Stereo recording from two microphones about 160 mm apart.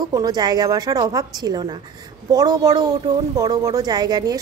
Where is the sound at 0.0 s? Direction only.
25° right (ahead or behind).